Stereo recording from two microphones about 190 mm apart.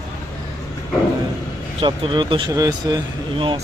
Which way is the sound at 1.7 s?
25° right (ahead or behind).